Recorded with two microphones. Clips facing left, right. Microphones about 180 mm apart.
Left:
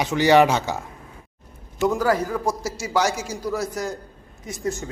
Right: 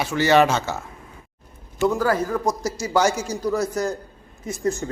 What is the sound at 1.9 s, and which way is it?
A man's voice, 15° left (ahead or behind).